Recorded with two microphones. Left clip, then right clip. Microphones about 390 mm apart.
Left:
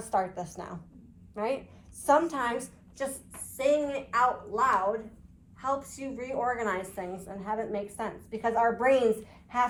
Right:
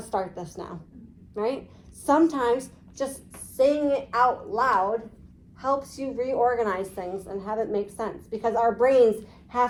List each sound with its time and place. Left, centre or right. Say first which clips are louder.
0.1 s a woman's voice: even; centre